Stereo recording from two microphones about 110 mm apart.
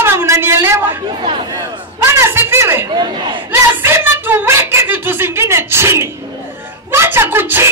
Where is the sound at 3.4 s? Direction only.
20° right (ahead or behind).